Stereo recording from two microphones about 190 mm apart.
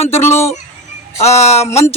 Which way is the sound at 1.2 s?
35° left (ahead or behind).